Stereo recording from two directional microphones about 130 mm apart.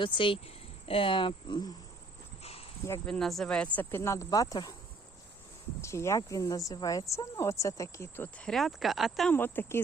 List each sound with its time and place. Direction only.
0.0 s speech: 40° left (ahead or behind)
2.4 s a sound: 50° left (ahead or behind)
3.1 s speech: 5° left (ahead or behind); by 4.7 s 30° left (ahead or behind)
5.8 s speech: 20° left (ahead or behind)
8.4 s speech: centre (ahead or behind)
9.3 s speech: 15° left (ahead or behind)